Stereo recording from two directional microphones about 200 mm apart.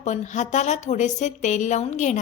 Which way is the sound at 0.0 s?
35° left (ahead or behind).